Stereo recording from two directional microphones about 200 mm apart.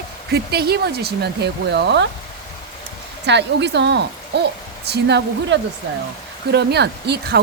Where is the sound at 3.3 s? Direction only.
60° right (ahead or behind).